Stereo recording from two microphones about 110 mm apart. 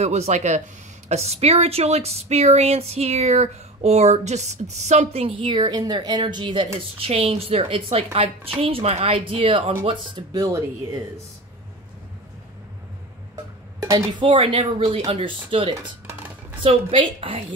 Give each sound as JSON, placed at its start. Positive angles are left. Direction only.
{"t": 0.0, "sound": "speech", "side_deg": -90}
{"t": 1.0, "sound": "speech", "side_deg": -75}
{"t": 13.7, "sound": "a sound", "side_deg": -30}
{"t": 14.2, "sound": "a woman's voice", "side_deg": -55}